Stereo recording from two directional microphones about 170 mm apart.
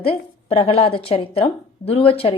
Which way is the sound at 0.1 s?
35° left (ahead or behind).